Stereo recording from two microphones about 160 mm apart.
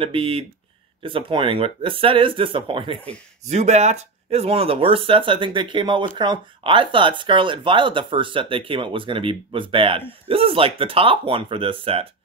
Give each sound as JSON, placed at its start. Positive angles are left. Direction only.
{"t": 0.0, "sound": "speech", "side_deg": -35}
{"t": 3.4, "sound": "speech", "side_deg": -45}